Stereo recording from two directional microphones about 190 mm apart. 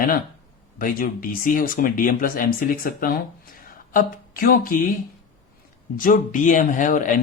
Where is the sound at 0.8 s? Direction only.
45° left (ahead or behind).